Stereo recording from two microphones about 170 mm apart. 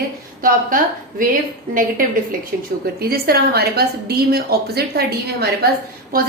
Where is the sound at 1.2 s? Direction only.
55° right (ahead or behind).